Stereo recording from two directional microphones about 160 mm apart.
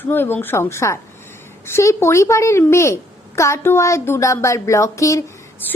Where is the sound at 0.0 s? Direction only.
15° left (ahead or behind).